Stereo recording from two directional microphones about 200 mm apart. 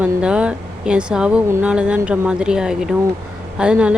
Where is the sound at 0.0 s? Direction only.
5° right (ahead or behind).